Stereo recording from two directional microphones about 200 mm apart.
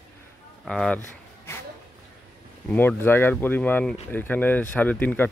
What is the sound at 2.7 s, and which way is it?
A man's voice, 10° left (ahead or behind).